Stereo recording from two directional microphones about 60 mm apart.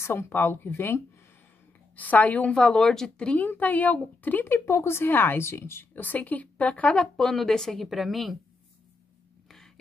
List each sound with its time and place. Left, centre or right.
0.0 s speech: left
2.0 s a woman's voice: left
2.5 s speech: centre
3.3 s a woman's voice: left
4.5 s speech: left
7.2 s a woman's voice: centre